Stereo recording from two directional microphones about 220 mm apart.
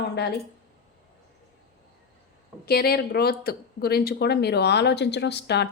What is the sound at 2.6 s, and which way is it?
Speech, 45° left (ahead or behind).